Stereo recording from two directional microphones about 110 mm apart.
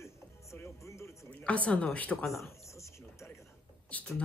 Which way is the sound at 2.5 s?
25° left (ahead or behind).